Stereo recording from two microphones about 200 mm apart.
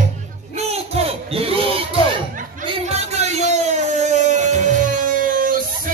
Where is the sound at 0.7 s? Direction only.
30° right (ahead or behind).